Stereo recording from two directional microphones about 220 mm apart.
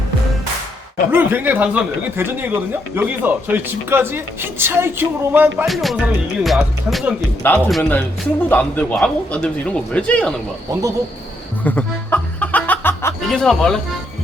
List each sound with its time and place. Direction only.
1.1 s a man's voice: 10° right (ahead or behind)
10.7 s speech: 15° right (ahead or behind)
11.6 s music: 5° left (ahead or behind)
13.2 s a man's voice: centre (ahead or behind)